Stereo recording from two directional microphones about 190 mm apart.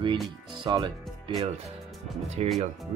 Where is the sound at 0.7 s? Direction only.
20° right (ahead or behind).